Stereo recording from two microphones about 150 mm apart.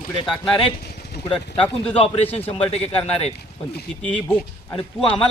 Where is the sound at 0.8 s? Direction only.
90° left.